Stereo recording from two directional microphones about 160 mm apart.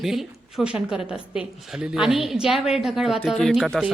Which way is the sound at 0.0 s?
Centre (ahead or behind).